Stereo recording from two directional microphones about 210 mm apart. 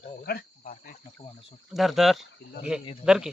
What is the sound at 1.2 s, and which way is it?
Speech, 25° left (ahead or behind).